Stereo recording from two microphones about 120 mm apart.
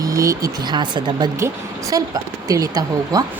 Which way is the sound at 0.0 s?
30° right (ahead or behind).